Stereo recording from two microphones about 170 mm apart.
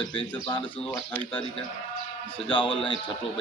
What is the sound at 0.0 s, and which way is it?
Speech, 30° left (ahead or behind).